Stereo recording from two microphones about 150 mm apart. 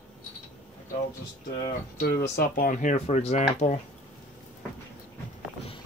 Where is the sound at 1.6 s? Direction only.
75° left (ahead or behind); by 2.9 s 55° left (ahead or behind).